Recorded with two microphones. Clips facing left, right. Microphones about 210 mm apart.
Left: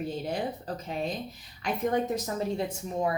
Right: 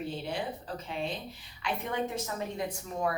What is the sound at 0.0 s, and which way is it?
A woman's voice, 40° left (ahead or behind).